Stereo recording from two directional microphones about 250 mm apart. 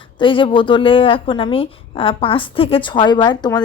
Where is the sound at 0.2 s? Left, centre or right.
Centre.